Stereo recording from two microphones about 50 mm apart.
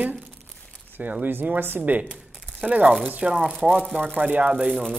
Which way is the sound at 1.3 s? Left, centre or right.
Right.